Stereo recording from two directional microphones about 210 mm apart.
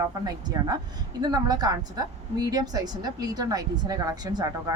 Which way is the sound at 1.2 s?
20° right (ahead or behind).